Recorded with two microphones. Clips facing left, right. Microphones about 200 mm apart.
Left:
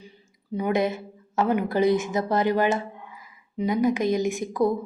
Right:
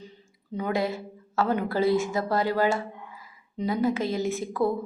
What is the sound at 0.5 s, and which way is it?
A woman's voice, 15° left (ahead or behind).